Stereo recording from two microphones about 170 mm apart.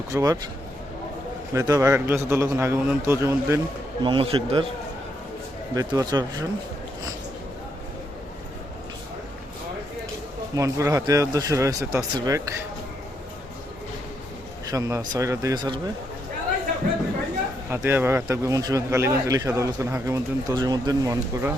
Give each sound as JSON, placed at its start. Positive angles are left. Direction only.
{"t": 0.1, "sound": "speech", "side_deg": -20}
{"t": 1.5, "sound": "a man's voice", "side_deg": -20}
{"t": 4.0, "sound": "a man's voice", "side_deg": -30}
{"t": 5.7, "sound": "speech", "side_deg": -20}
{"t": 10.5, "sound": "speech", "side_deg": -20}
{"t": 14.7, "sound": "speech", "side_deg": -20}
{"t": 17.7, "sound": "speech", "side_deg": -10}